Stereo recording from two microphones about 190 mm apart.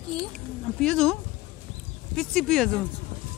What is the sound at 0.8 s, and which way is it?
Speech, centre (ahead or behind).